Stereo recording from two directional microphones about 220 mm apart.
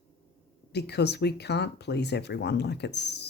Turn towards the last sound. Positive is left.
turn(degrees=50)  # may be behind; listen again after turning